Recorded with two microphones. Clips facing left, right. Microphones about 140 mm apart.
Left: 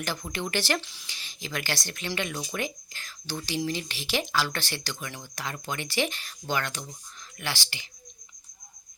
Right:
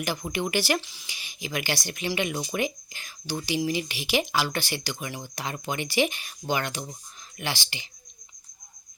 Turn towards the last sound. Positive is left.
turn(degrees=-20)  # may be behind; listen again after turning